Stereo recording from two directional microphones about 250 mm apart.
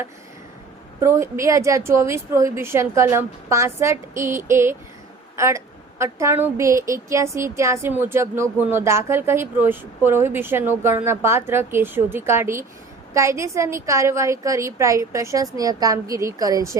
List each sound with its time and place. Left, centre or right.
0.9 s a woman's voice: centre